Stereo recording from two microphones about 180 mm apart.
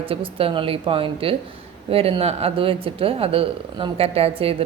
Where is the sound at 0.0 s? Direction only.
30° right (ahead or behind).